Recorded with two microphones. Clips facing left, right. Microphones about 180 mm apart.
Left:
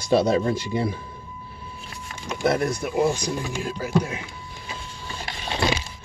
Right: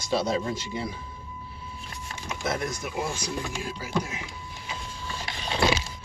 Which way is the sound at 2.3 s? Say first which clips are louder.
Left 8 dB; 60° left (ahead or behind).